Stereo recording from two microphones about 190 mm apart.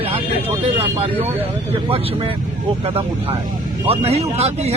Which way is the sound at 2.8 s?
30° right (ahead or behind).